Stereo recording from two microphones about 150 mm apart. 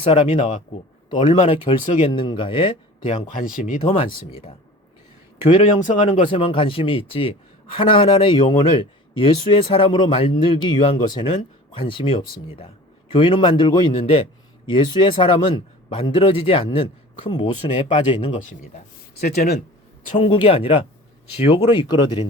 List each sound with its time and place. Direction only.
0.0 s a man's voice: 40° left (ahead or behind)
3.3 s speech: 65° left (ahead or behind)
6.3 s a man's voice: 35° left (ahead or behind)
19.2 s speech: 90° left
20.1 s a man's voice: 35° left (ahead or behind)